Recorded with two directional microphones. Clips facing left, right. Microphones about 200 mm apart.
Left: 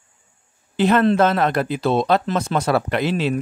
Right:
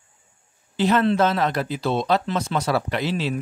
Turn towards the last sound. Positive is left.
turn(degrees=55)  # may be behind; listen again after turning